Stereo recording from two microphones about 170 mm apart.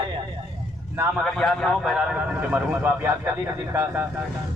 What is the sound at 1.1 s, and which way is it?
A man's voice, 5° left (ahead or behind).